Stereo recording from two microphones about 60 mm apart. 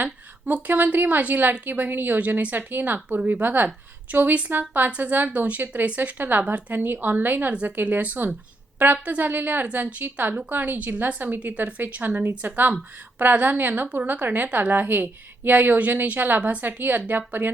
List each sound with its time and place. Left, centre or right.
0.0 s a woman's voice: right